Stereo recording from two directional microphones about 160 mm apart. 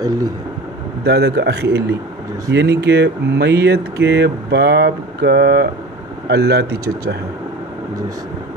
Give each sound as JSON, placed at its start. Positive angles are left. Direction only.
{"t": 1.0, "sound": "a man's voice", "side_deg": -90}